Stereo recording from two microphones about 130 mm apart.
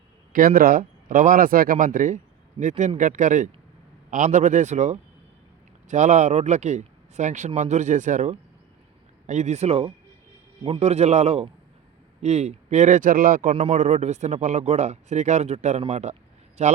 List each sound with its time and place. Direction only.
0.3 s speech: 90° right
13.5 s speech: 45° right (ahead or behind)
13.7 s speech: 65° right (ahead or behind)